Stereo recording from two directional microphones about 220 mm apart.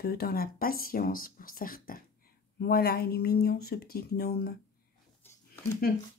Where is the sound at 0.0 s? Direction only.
45° left (ahead or behind).